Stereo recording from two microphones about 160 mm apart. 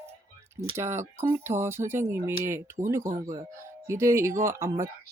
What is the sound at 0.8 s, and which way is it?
Speech, 15° right (ahead or behind).